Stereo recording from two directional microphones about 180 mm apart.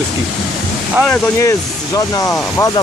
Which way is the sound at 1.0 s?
15° left (ahead or behind).